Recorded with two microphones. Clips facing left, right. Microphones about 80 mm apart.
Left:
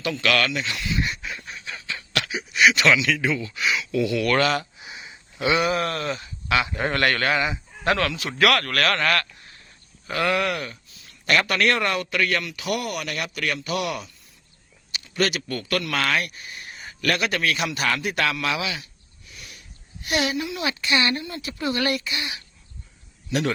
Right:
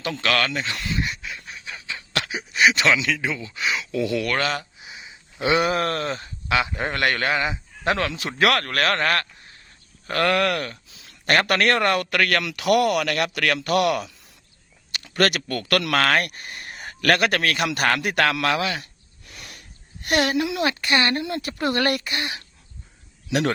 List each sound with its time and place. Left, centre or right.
0.0 s speech: right
1.1 s fowl: centre
1.6 s a sound: centre
2.1 s a sound: right
2.6 s speech: right
4.4 s a sound: centre
5.4 s speech: right
10.1 s speech: right
11.3 s speech: right
14.9 s speech: right
18.4 s a sound: right
20.6 s speech: right